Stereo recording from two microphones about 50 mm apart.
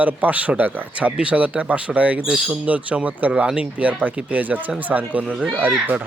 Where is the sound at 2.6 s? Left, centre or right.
Right.